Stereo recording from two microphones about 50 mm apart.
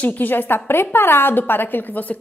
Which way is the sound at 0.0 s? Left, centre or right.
Left.